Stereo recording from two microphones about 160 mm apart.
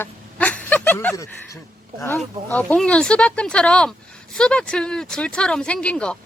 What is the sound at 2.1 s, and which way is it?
Speech, 10° left (ahead or behind).